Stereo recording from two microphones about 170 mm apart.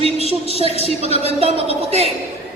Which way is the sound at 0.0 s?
35° right (ahead or behind).